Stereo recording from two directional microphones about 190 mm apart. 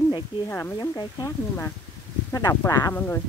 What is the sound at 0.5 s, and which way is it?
Speech, 15° left (ahead or behind).